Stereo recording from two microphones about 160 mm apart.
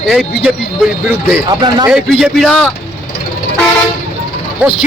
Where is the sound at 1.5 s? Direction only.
25° right (ahead or behind).